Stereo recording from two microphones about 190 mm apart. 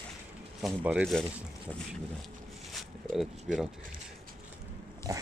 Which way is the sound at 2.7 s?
Centre (ahead or behind).